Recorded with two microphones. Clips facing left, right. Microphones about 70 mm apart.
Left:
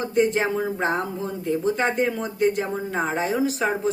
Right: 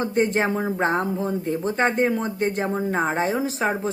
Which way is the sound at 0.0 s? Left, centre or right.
Right.